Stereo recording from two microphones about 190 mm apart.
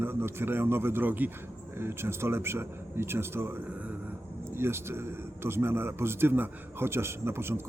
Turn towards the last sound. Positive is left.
turn(degrees=-10)  # may be behind; listen again after turning